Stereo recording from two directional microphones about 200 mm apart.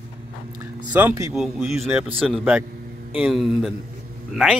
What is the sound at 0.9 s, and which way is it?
Speech, 10° right (ahead or behind).